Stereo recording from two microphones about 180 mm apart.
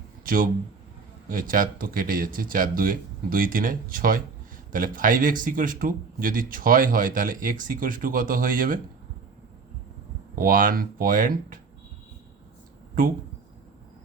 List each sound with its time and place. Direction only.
1.3 s a man's voice: 50° right (ahead or behind)
10.3 s a man's voice: 50° right (ahead or behind)